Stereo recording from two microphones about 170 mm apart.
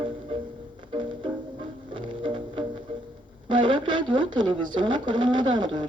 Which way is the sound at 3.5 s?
30° right (ahead or behind).